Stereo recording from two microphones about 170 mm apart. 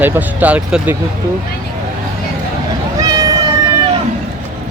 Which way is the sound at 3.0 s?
20° right (ahead or behind).